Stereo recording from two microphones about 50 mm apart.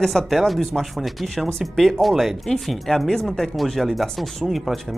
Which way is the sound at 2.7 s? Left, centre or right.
Centre.